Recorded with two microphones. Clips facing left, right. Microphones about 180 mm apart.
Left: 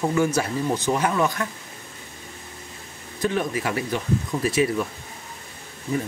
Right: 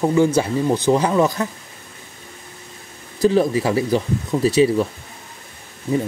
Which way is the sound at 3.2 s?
35° right (ahead or behind).